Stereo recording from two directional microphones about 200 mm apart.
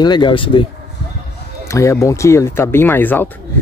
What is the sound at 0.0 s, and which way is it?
Speech, 20° left (ahead or behind).